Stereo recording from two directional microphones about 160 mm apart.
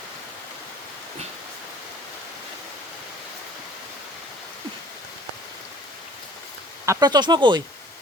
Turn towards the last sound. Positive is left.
turn(degrees=-30)  # may be behind; listen again after turning